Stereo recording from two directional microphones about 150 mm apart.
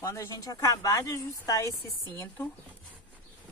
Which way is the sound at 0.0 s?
20° left (ahead or behind).